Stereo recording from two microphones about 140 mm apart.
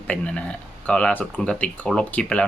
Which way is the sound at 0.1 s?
10° left (ahead or behind).